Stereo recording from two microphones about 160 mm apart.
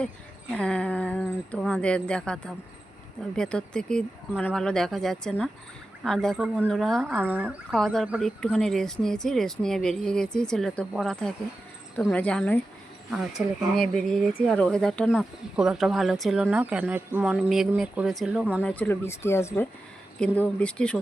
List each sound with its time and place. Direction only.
0.5 s speech: 5° left (ahead or behind)
7.0 s speech: 10° right (ahead or behind)
17.3 s speech: centre (ahead or behind)
18.6 s speech: 10° left (ahead or behind)